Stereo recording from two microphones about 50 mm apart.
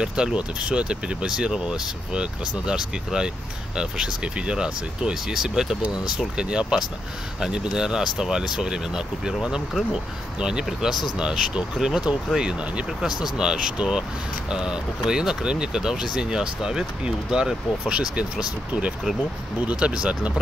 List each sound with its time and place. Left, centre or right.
0.0 s speech: centre
10.4 s speech: centre
19.6 s speech: right